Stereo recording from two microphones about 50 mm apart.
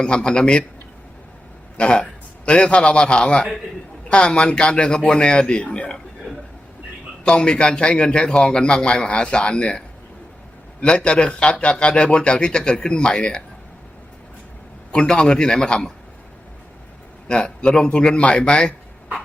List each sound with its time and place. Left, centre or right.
0.0 s a man's voice: centre
1.8 s a man's voice: left
6.3 s a sound: centre
7.3 s a man's voice: centre
14.9 s a man's voice: centre
17.2 s a man's voice: centre